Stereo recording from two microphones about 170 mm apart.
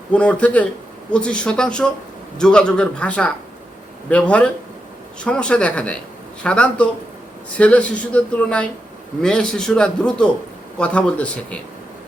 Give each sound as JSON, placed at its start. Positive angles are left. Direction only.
{"t": 0.1, "sound": "a man's voice", "side_deg": 5}